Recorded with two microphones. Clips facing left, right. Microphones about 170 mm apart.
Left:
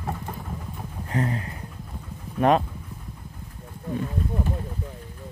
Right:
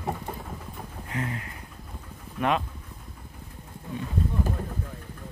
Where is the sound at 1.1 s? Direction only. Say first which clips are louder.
Left 6 dB; 35° left (ahead or behind).